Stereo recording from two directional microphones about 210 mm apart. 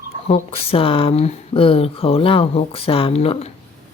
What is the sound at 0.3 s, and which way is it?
Speech, 30° left (ahead or behind).